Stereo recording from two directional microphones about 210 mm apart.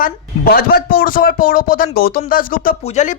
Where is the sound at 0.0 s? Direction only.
45° left (ahead or behind).